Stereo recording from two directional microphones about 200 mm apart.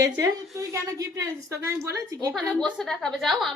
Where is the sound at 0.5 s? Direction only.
15° right (ahead or behind).